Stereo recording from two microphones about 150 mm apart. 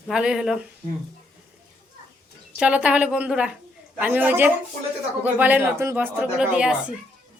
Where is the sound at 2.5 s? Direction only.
10° right (ahead or behind).